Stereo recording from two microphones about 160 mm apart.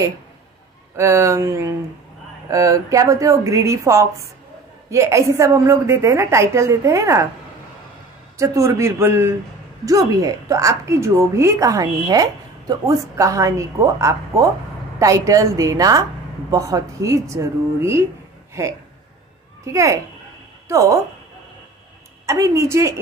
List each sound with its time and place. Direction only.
0.9 s a woman's voice: 20° right (ahead or behind)
8.4 s a woman's voice: 20° right (ahead or behind)
22.2 s a woman's voice: 20° right (ahead or behind)